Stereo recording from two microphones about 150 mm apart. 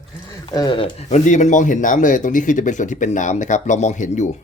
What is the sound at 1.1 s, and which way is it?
Speech, 55° left (ahead or behind).